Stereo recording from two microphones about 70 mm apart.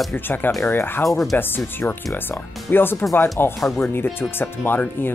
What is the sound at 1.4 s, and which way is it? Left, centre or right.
Speech, left.